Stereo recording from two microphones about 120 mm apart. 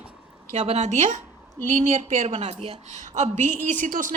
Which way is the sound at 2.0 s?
70° right (ahead or behind).